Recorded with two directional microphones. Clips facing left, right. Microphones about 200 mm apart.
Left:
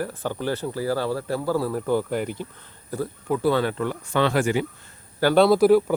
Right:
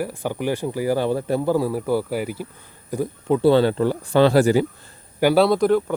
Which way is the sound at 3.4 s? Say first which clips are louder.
Right 7 dB; 30° right (ahead or behind).